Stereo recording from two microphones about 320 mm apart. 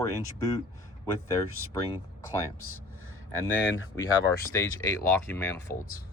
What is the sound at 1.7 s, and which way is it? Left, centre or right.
Speech, centre.